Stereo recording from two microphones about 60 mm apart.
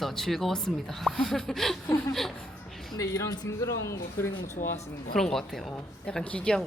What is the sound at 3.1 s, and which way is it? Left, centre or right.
Speech, left.